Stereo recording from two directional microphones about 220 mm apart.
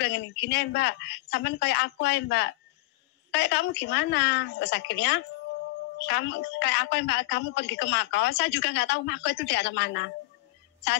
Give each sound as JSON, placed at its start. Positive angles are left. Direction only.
{"t": 0.0, "sound": "a woman's voice", "side_deg": 55}